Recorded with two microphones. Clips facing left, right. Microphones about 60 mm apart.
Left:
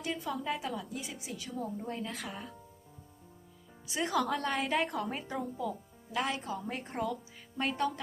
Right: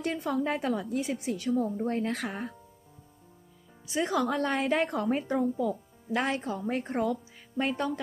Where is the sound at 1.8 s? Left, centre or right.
Right.